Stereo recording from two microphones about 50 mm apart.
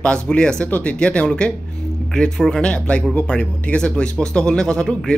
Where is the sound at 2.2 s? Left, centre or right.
Centre.